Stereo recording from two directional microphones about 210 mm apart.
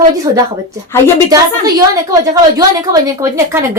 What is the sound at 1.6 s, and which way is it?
A woman's voice, 20° right (ahead or behind).